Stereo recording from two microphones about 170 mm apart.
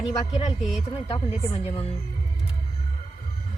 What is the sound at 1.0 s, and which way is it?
Speech, 35° left (ahead or behind).